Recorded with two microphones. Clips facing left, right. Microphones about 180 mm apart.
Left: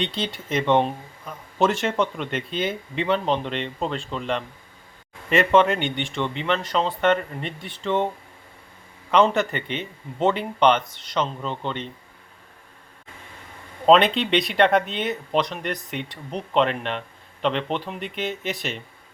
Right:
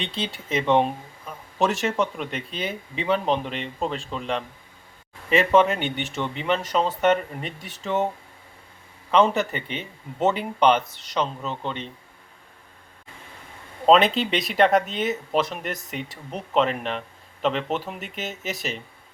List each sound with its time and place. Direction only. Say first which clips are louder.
0.0 s speech: left 3 dB; centre (ahead or behind)
9.1 s speech: left 1 dB; 5° right (ahead or behind)
13.8 s speech: left 1 dB; centre (ahead or behind)